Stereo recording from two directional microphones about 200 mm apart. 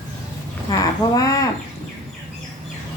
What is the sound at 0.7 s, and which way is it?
Speech, 15° left (ahead or behind).